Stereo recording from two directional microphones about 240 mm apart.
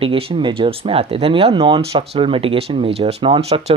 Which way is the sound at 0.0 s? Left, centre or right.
Right.